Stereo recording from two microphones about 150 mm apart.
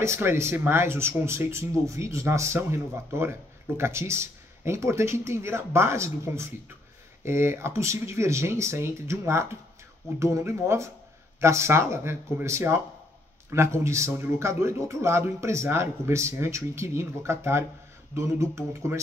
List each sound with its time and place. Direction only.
0.0 s speech: 15° right (ahead or behind)